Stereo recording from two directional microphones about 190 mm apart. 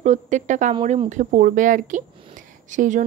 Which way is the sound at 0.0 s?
40° right (ahead or behind).